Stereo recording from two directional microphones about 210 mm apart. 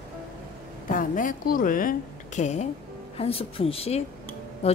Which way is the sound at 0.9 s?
40° left (ahead or behind).